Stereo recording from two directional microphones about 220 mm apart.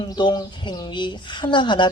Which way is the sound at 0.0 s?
20° left (ahead or behind).